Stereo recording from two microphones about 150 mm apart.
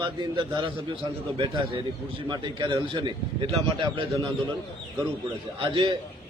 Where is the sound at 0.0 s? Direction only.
30° right (ahead or behind).